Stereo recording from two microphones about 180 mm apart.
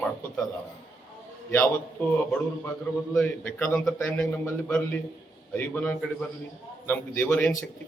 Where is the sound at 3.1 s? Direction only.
10° left (ahead or behind).